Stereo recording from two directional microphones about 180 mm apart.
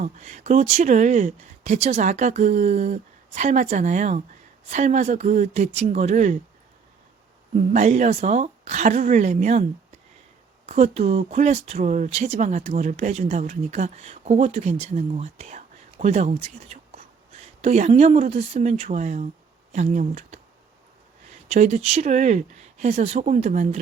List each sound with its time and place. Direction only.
0.0 s speech: 40° right (ahead or behind)
7.5 s speech: 40° right (ahead or behind)
10.7 s speech: 35° right (ahead or behind)
21.5 s speech: 35° right (ahead or behind)